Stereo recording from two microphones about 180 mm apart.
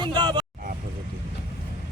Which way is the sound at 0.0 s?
25° right (ahead or behind).